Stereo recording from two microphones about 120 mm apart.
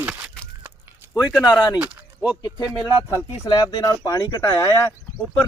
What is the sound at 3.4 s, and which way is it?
Speech, 35° left (ahead or behind).